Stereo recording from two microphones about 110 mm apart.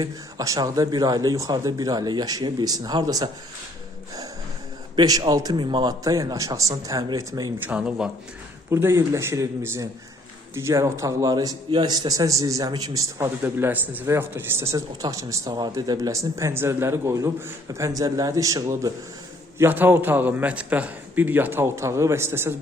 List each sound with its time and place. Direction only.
0.0 s speech: 30° right (ahead or behind)
4.9 s speech: 40° right (ahead or behind)
7.6 s speech: 10° right (ahead or behind)
8.7 s speech: 25° right (ahead or behind)
13.4 s speech: 20° right (ahead or behind)
19.5 s speech: 20° right (ahead or behind)